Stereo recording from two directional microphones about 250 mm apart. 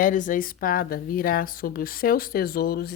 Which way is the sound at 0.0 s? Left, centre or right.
Left.